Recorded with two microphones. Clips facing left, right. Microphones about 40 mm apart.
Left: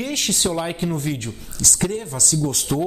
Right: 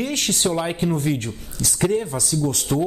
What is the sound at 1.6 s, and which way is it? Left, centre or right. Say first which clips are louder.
Speech: right 3 dB; centre.